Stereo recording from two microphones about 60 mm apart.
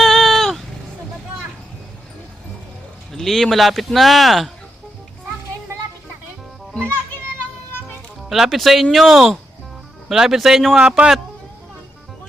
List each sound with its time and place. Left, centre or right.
0.0 s vehicle: centre
3.1 s speech: centre
8.3 s speech: centre
10.8 s a man's voice: centre